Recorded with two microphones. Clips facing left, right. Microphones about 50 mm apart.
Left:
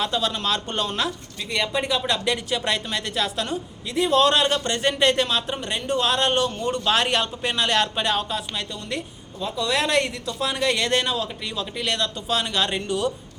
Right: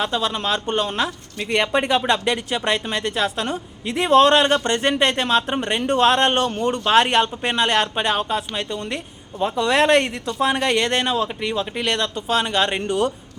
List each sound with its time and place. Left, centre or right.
0.0 s speech: right
1.4 s speech: right